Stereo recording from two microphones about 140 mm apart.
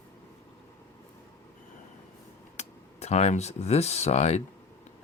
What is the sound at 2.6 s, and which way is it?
Speech, 50° left (ahead or behind).